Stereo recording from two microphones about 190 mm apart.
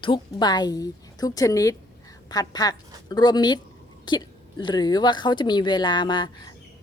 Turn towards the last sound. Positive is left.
turn(degrees=25)  # may be behind; listen again after turning